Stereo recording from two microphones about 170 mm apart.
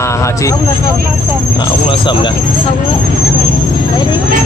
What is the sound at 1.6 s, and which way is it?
Speech, 25° left (ahead or behind).